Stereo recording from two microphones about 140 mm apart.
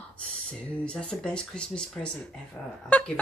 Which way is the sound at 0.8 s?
5° left (ahead or behind).